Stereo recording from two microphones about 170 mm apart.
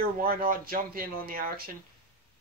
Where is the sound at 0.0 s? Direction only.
60° right (ahead or behind).